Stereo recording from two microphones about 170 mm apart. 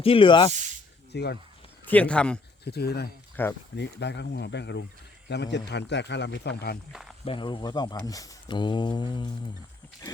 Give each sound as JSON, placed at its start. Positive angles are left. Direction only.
{"t": 0.0, "sound": "speech", "side_deg": 30}
{"t": 0.5, "sound": "speech", "side_deg": -45}
{"t": 1.1, "sound": "speech", "side_deg": 75}
{"t": 1.8, "sound": "a man's voice", "side_deg": 10}
{"t": 2.6, "sound": "speech", "side_deg": 70}
{"t": 3.4, "sound": "speech", "side_deg": 10}
{"t": 3.8, "sound": "speech", "side_deg": 90}
{"t": 7.3, "sound": "speech", "side_deg": 30}